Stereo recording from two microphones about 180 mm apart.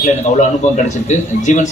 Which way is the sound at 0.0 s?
40° left (ahead or behind).